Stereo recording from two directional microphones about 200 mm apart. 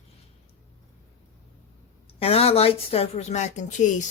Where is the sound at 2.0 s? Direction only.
30° left (ahead or behind).